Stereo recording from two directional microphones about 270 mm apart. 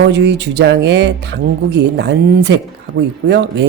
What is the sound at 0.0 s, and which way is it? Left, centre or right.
A man's voice, right.